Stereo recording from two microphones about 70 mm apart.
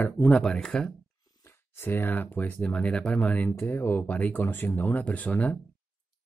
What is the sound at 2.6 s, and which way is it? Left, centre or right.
Speech, centre.